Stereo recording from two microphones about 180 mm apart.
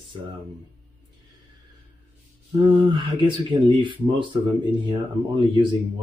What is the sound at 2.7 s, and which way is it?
Speech, 30° right (ahead or behind).